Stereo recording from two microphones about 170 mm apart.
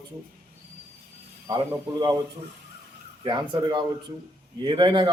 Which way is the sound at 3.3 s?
25° right (ahead or behind).